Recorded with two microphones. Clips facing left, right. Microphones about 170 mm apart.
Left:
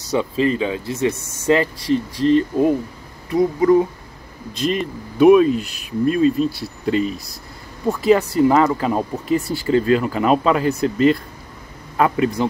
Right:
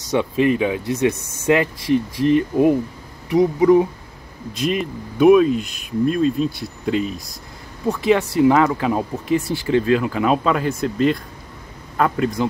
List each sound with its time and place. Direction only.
0.2 s speech: 15° right (ahead or behind)
2.2 s speech: 15° right (ahead or behind)
4.6 s speech: centre (ahead or behind)